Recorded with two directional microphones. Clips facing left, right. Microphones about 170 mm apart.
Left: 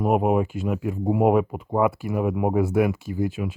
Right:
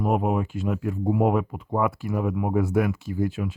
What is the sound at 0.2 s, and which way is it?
Speech, 5° left (ahead or behind).